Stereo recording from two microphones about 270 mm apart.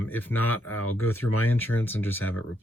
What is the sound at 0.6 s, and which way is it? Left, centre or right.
Speech, left.